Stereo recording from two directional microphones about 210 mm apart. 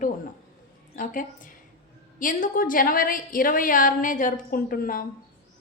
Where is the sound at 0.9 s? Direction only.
40° left (ahead or behind).